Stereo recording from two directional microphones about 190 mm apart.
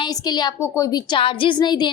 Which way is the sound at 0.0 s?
20° left (ahead or behind).